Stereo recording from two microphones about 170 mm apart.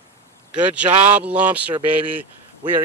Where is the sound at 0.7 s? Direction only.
10° right (ahead or behind).